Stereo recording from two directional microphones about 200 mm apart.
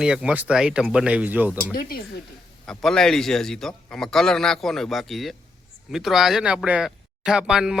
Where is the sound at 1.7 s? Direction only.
50° left (ahead or behind).